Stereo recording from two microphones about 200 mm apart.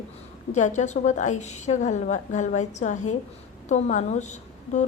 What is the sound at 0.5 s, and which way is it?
A woman's voice, 35° left (ahead or behind).